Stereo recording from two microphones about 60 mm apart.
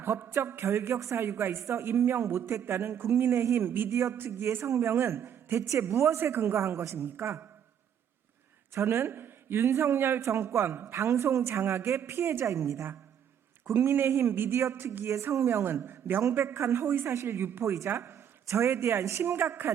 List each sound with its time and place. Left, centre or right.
0.0 s a man's voice: right
3.8 s a woman's voice: right
8.7 s speech: right
12.5 s a woman's voice: right
14.1 s speech: right
15.0 s speech: right
15.6 s a man's voice: right
17.1 s a woman's voice: right